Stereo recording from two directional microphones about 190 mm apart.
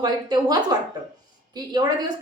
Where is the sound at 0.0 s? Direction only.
20° right (ahead or behind).